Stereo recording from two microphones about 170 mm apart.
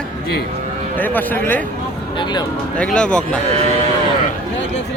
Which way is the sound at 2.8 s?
5° left (ahead or behind).